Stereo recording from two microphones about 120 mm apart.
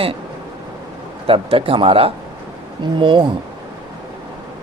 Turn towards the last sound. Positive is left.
turn(degrees=-45)  # may be behind; listen again after turning